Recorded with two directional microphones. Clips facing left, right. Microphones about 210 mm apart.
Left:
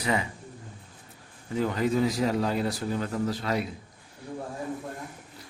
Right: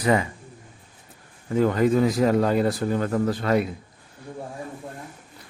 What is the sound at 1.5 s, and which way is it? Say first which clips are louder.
Speech: right 6 dB; 50° right (ahead or behind).